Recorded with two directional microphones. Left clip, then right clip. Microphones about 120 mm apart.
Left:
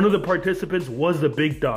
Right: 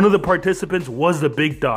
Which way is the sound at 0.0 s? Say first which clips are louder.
Right 4 dB; 30° right (ahead or behind).